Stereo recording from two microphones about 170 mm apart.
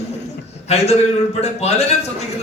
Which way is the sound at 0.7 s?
40° left (ahead or behind).